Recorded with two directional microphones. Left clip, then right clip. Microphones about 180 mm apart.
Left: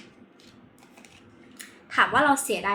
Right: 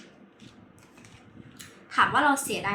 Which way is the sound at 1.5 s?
15° right (ahead or behind).